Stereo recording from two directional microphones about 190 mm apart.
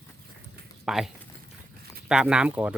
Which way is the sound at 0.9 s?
Centre (ahead or behind).